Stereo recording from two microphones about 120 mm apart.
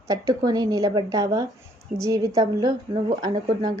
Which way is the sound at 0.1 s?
30° right (ahead or behind).